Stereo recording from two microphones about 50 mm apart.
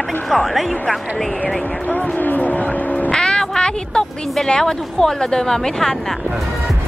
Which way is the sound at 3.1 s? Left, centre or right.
Centre.